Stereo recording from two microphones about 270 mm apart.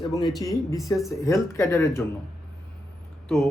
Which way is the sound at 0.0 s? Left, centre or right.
Centre.